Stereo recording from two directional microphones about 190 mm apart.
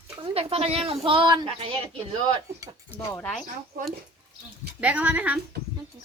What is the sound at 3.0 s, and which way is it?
Speech, 5° left (ahead or behind).